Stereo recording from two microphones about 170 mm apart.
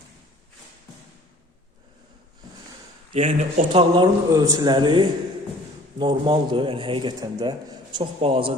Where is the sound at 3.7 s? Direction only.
25° right (ahead or behind).